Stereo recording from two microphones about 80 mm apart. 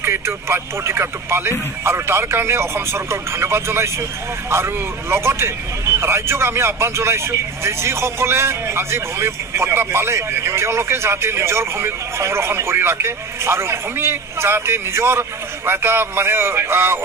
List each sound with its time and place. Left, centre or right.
0.0 s speech: right